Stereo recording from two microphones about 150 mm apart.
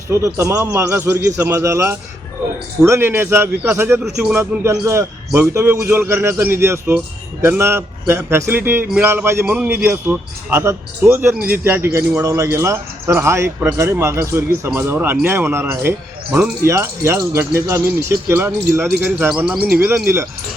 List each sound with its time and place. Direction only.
0.1 s a man's voice: 20° right (ahead or behind)